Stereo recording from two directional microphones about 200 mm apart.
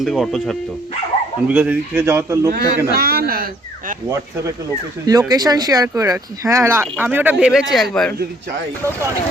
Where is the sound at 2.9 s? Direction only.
50° right (ahead or behind).